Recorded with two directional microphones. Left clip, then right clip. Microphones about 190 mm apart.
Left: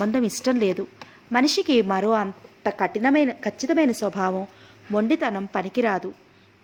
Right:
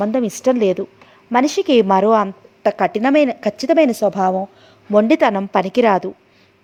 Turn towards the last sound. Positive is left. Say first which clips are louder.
# right 9 dB
turn(degrees=-35)  # may be behind; listen again after turning